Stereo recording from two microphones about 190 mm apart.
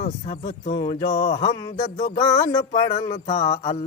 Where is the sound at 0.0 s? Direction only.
35° left (ahead or behind).